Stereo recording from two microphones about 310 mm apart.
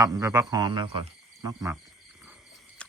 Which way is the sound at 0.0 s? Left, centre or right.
Centre.